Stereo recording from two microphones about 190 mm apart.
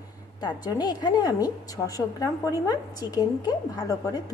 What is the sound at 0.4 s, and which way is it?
A woman's voice, 20° left (ahead or behind).